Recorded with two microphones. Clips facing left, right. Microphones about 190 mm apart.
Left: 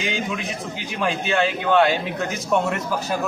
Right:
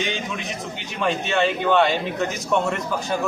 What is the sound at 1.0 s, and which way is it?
Speech, centre (ahead or behind).